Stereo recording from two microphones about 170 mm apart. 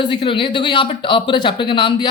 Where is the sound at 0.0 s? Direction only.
30° left (ahead or behind).